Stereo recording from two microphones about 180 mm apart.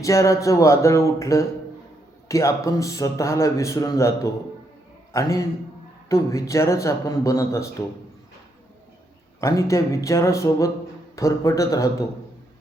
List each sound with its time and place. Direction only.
0.0 s a man's voice: 15° left (ahead or behind)
9.4 s a man's voice: 15° left (ahead or behind)